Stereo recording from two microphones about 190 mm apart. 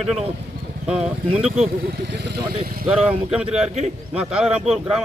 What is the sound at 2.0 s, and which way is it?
Speech, 60° right (ahead or behind).